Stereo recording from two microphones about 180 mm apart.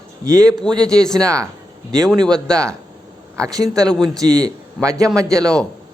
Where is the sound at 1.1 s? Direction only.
15° right (ahead or behind).